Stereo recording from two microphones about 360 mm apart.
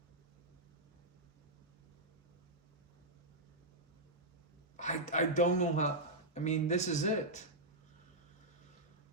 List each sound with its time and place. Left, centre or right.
4.8 s a man's voice: centre